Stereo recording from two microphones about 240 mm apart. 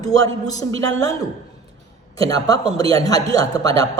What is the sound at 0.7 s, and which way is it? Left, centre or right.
Speech, right.